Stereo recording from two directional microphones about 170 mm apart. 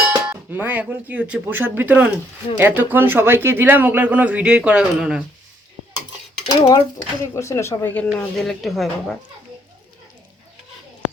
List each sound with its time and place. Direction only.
0.3 s speech: 10° right (ahead or behind)
6.5 s speech: 20° left (ahead or behind); by 9.1 s centre (ahead or behind)